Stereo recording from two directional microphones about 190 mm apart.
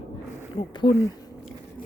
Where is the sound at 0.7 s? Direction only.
25° left (ahead or behind).